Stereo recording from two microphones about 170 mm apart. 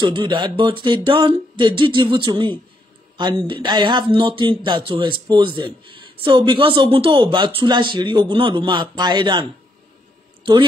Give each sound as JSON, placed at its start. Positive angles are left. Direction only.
{"t": 0.0, "sound": "a man's voice", "side_deg": -30}